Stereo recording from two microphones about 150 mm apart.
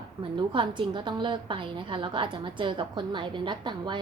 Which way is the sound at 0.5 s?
35° right (ahead or behind).